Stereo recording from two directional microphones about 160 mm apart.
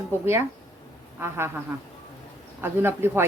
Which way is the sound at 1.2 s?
15° right (ahead or behind).